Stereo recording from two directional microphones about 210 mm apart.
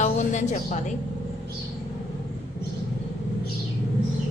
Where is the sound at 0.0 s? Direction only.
35° left (ahead or behind).